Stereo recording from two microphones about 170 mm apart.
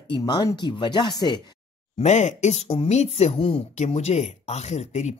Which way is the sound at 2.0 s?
45° left (ahead or behind).